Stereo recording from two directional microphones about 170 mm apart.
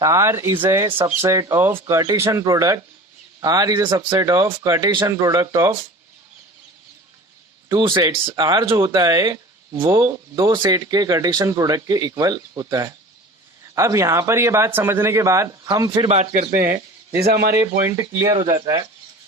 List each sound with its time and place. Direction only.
0.0 s a man's voice: 15° right (ahead or behind)
0.9 s speech: 30° right (ahead or behind)
1.2 s a man's voice: 15° right (ahead or behind)
7.7 s a man's voice: 25° right (ahead or behind)
16.0 s a man's voice: 45° right (ahead or behind)
17.2 s speech: 70° right (ahead or behind)
17.5 s a man's voice: 20° right (ahead or behind)
18.3 s speech: 30° right (ahead or behind)